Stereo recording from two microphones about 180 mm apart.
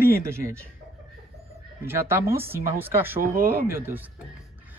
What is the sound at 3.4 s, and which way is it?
Speech, 15° right (ahead or behind).